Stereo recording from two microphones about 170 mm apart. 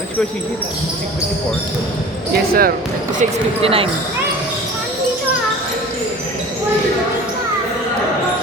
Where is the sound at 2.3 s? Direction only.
60° right (ahead or behind).